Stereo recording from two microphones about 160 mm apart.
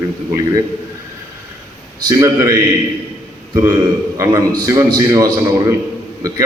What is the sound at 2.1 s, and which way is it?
A man's voice, 20° right (ahead or behind).